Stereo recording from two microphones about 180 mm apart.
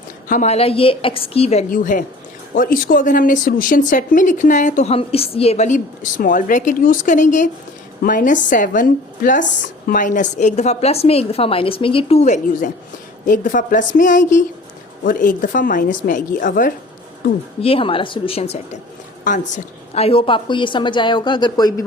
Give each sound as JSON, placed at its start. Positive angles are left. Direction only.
{"t": 0.3, "sound": "a woman's voice", "side_deg": 40}
{"t": 17.6, "sound": "a woman's voice", "side_deg": 30}